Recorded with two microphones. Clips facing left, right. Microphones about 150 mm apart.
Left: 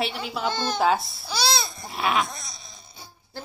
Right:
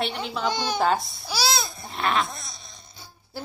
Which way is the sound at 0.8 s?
Centre (ahead or behind).